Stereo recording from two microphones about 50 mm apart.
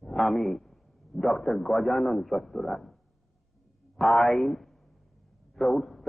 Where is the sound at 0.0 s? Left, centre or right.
Centre.